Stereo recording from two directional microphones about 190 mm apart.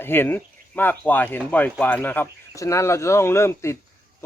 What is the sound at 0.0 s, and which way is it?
Speech, 10° left (ahead or behind).